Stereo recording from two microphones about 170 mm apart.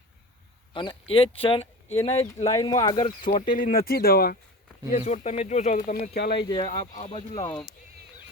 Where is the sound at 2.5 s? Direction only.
25° left (ahead or behind).